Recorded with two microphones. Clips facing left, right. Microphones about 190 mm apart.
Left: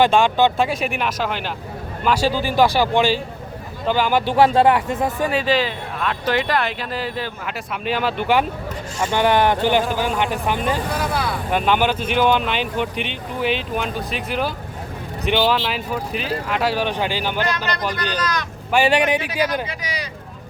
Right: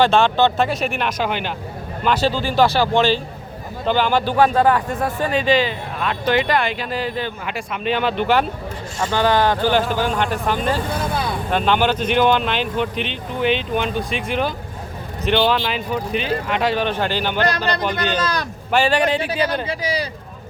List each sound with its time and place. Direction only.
0.0 s speech: 15° left (ahead or behind)
2.0 s speech: 10° left (ahead or behind)
4.3 s speech: 25° left (ahead or behind)
5.3 s speech: 5° left (ahead or behind)
11.0 s speech: 20° right (ahead or behind)
11.5 s speech: 10° left (ahead or behind)
17.7 s speech: 25° right (ahead or behind)
18.7 s speech: 20° left (ahead or behind)
19.6 s speech: 30° right (ahead or behind)